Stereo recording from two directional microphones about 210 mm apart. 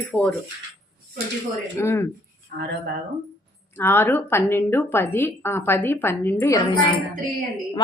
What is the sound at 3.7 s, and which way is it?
A woman's voice, 10° left (ahead or behind).